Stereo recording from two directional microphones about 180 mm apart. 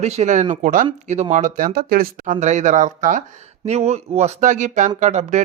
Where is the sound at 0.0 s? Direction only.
40° right (ahead or behind).